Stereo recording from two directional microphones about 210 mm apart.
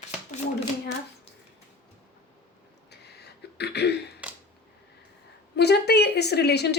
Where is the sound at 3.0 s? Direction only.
50° left (ahead or behind).